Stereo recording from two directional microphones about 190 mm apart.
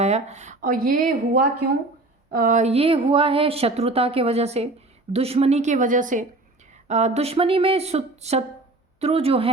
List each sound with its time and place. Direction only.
0.0 s speech: 35° right (ahead or behind)